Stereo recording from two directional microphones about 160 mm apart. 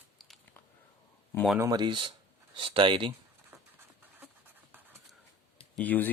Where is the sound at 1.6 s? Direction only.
25° right (ahead or behind).